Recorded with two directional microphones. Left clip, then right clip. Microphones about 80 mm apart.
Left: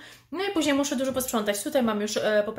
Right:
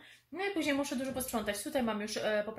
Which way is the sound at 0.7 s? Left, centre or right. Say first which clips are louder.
Left 9 dB; left.